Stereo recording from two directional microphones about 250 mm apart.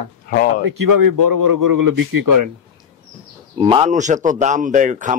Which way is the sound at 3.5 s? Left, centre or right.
Right.